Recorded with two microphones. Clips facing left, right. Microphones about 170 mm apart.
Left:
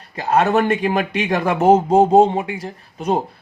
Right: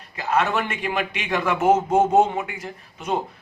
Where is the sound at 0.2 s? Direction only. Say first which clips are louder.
Left 6 dB; 40° left (ahead or behind).